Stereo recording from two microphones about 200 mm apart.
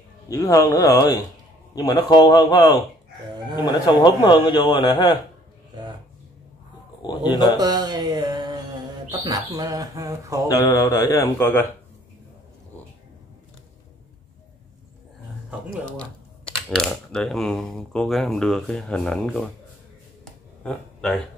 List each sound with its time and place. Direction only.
0.3 s a man's voice: 15° left (ahead or behind)
3.3 s a sound: 20° right (ahead or behind)
3.5 s a man's voice: 20° left (ahead or behind)
7.0 s a man's voice: 20° left (ahead or behind)
7.5 s mantra: 20° right (ahead or behind)
9.2 s speech: 20° right (ahead or behind)
10.5 s a man's voice: 15° left (ahead or behind)
16.6 s speech: centre (ahead or behind)
20.6 s speech: 5° left (ahead or behind)